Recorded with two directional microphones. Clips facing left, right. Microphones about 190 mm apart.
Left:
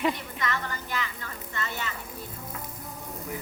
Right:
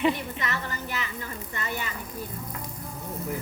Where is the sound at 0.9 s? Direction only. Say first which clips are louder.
Right 1 dB; 15° right (ahead or behind).